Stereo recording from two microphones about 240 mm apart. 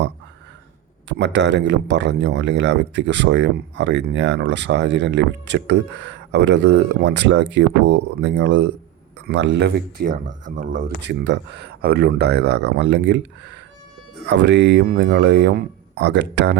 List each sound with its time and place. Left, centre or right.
1.0 s a man's voice: right
11.0 s a man's voice: right